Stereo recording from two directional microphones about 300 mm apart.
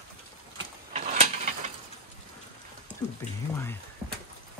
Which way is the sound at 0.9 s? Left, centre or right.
Right.